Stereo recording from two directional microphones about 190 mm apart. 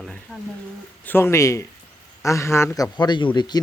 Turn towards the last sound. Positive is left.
turn(degrees=20)  # may be behind; listen again after turning